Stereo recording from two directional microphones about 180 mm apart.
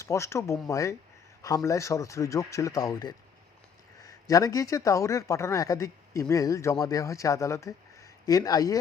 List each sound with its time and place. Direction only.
0.0 s a man's voice: 15° left (ahead or behind)